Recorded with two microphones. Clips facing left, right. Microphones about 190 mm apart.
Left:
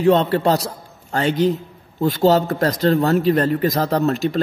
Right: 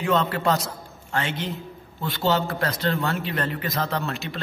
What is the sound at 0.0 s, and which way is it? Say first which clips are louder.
A man's voice: left 8 dB; 35° left (ahead or behind).